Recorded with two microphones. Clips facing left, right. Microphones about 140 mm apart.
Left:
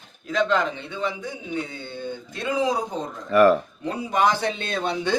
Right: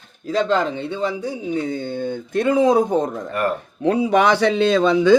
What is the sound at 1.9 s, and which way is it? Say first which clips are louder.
Speech: right 9 dB; 50° right (ahead or behind).